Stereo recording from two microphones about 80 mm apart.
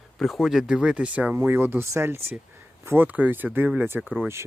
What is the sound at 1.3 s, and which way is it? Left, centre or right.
Speech, right.